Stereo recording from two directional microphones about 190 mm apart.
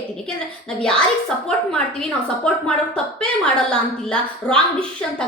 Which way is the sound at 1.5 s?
5° left (ahead or behind).